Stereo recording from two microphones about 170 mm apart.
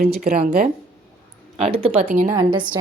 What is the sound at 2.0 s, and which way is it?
Speech, 50° right (ahead or behind).